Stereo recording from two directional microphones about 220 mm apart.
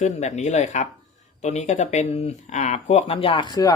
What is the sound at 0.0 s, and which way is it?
Speech, 30° left (ahead or behind).